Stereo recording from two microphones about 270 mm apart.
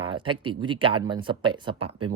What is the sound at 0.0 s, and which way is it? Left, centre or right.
Speech, centre.